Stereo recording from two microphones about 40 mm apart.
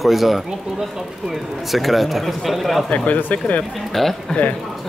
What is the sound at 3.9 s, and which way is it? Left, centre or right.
Speech, centre.